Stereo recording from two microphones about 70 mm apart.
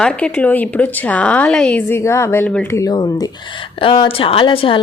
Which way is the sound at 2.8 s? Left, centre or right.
Left.